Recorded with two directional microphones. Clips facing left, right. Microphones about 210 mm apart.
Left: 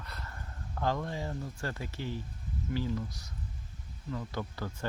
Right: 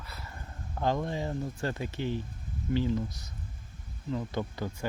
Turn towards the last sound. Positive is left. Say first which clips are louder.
# right 4 dB
turn(degrees=-15)  # may be behind; listen again after turning